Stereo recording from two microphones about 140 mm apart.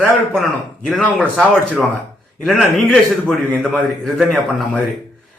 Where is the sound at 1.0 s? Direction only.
10° left (ahead or behind).